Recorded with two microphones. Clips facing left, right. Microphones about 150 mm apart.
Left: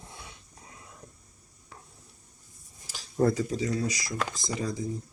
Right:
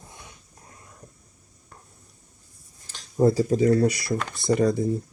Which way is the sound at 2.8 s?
10° left (ahead or behind).